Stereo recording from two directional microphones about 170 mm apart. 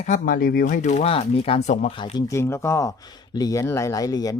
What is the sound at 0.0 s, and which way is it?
Speech, 50° left (ahead or behind).